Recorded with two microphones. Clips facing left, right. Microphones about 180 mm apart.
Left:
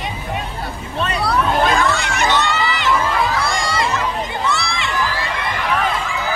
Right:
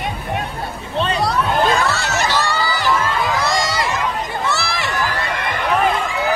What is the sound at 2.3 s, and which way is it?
Crowd, 20° left (ahead or behind).